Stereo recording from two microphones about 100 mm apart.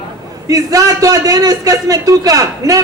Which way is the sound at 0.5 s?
35° right (ahead or behind).